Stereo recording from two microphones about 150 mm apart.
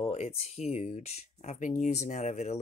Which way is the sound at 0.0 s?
45° left (ahead or behind).